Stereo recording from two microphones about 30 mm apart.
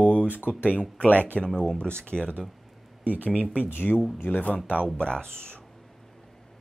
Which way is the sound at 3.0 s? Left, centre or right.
Right.